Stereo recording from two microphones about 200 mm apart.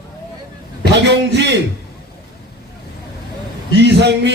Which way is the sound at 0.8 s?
60° right (ahead or behind).